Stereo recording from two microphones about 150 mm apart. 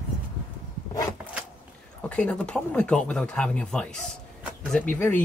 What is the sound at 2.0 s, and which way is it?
Speech, 10° left (ahead or behind).